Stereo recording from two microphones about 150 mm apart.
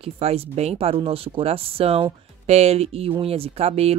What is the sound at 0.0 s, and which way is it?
Speech, 40° right (ahead or behind).